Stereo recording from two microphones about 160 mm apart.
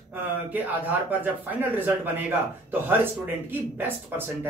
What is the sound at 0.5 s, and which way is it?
Speech, 10° right (ahead or behind).